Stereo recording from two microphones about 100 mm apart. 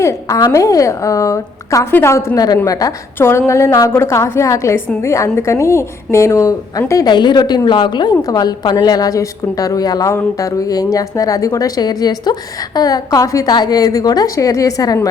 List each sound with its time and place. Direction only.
0.0 s a woman's voice: 35° left (ahead or behind)
7.1 s a woman's voice: 50° left (ahead or behind)